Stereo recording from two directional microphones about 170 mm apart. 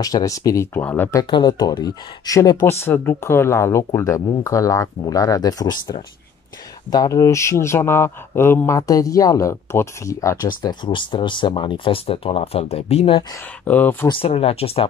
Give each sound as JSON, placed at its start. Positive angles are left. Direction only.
{"t": 0.0, "sound": "speech", "side_deg": 20}
{"t": 1.3, "sound": "speech", "side_deg": 25}
{"t": 13.7, "sound": "speech", "side_deg": 10}
{"t": 14.0, "sound": "speech", "side_deg": 35}